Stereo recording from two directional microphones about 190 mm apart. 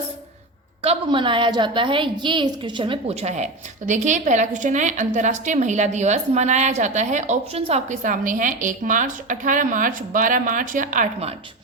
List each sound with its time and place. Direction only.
0.8 s a woman's voice: 30° right (ahead or behind)